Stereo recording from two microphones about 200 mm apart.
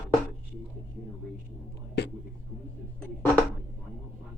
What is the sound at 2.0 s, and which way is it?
Whispering, 55° left (ahead or behind).